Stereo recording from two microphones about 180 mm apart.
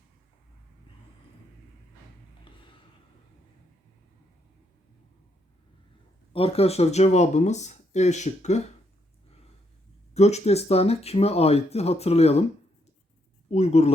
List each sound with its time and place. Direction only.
6.3 s speech: 30° left (ahead or behind)
10.2 s speech: 35° left (ahead or behind)
13.5 s speech: 40° left (ahead or behind)